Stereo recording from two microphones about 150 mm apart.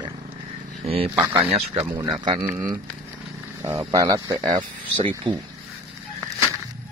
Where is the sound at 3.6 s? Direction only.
20° right (ahead or behind).